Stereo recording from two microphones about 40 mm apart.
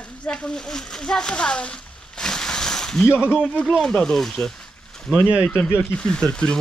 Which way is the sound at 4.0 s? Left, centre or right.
Centre.